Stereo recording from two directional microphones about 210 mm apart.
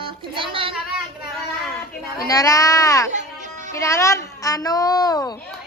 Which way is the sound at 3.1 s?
35° right (ahead or behind).